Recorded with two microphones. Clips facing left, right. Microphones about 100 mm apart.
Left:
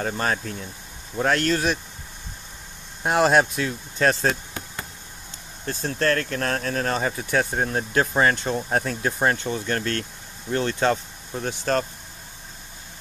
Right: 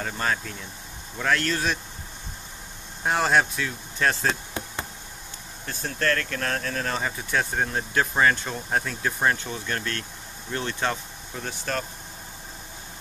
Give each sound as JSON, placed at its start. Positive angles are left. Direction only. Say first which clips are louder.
{"t": 0.0, "sound": "speech", "louder": "left 3 dB", "side_deg": 40}
{"t": 3.0, "sound": "speech", "louder": "left 4 dB", "side_deg": 20}
{"t": 5.7, "sound": "speech", "louder": "left 3 dB", "side_deg": 30}